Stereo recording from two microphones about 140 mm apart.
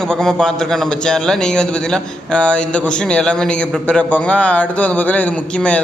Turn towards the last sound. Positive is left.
turn(degrees=10)  # may be behind; listen again after turning